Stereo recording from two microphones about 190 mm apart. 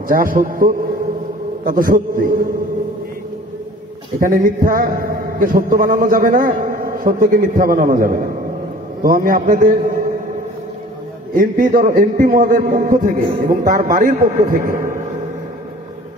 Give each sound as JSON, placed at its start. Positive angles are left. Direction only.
{"t": 0.1, "sound": "a man's voice", "side_deg": -45}
{"t": 4.2, "sound": "a man's voice", "side_deg": -45}
{"t": 11.3, "sound": "a man's voice", "side_deg": -45}